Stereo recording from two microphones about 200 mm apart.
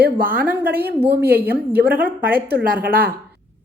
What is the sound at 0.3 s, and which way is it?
Speech, 10° right (ahead or behind).